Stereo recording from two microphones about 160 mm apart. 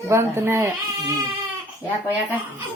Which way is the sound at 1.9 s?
10° right (ahead or behind).